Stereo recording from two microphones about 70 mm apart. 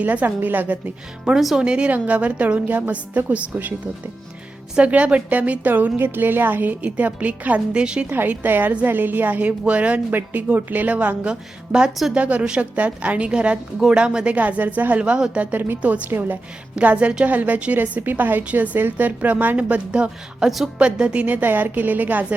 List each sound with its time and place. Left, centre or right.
0.0 s a woman's voice: right
1.2 s a woman's voice: centre
8.1 s a woman's voice: right
15.5 s a woman's voice: right